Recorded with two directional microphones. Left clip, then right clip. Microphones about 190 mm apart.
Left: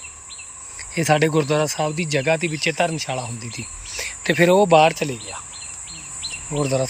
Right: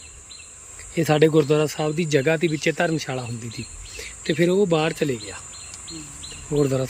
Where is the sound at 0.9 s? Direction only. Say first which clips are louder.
Right 1 dB; 10° right (ahead or behind).